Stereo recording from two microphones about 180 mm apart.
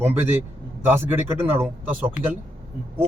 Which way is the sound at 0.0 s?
10° right (ahead or behind).